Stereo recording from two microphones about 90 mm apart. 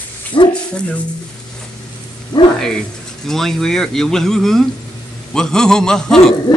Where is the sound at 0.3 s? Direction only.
65° left (ahead or behind).